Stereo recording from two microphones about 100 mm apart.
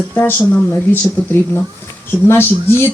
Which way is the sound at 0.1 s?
20° left (ahead or behind).